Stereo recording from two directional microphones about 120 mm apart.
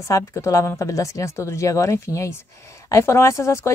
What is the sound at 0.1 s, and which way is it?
Speech, 25° left (ahead or behind).